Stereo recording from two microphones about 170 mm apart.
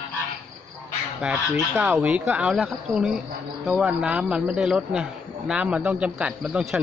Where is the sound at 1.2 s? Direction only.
5° right (ahead or behind).